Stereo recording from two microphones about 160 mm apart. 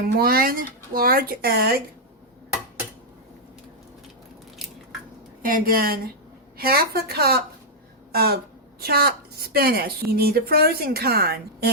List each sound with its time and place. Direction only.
0.2 s a woman's voice: 65° right (ahead or behind)
5.4 s a woman's voice: 60° right (ahead or behind); by 7.4 s 80° right
8.1 s a sound: 75° right (ahead or behind)
8.8 s a woman's voice: 75° right (ahead or behind)